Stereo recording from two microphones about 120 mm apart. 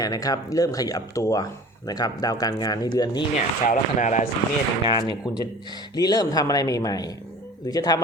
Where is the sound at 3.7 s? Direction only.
90° left.